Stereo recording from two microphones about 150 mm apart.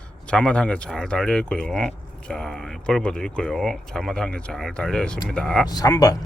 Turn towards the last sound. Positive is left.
turn(degrees=25)  # may be behind; listen again after turning